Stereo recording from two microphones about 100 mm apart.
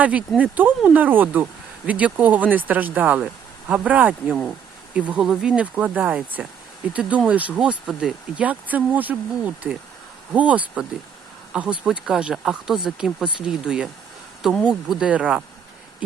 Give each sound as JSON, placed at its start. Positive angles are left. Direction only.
{"t": 0.0, "sound": "speech", "side_deg": -15}